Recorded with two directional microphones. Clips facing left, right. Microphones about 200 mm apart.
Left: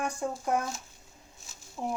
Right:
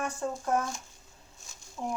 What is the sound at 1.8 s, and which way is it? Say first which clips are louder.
Speech: left 1 dB; 20° left (ahead or behind).